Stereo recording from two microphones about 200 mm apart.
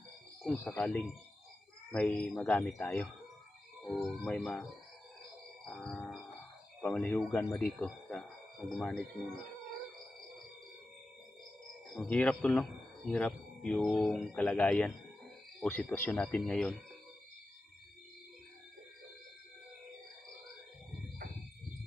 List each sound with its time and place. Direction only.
0.4 s speech: 10° left (ahead or behind)
5.6 s a sound: 5° left (ahead or behind)
6.8 s speech: 5° left (ahead or behind)
11.9 s speech: 5° left (ahead or behind)